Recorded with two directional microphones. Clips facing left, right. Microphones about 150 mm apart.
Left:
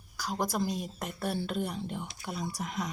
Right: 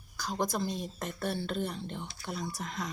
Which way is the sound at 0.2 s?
10° left (ahead or behind).